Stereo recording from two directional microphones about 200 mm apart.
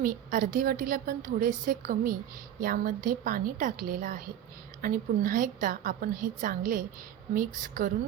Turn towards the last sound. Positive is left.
turn(degrees=-45)  # may be behind; listen again after turning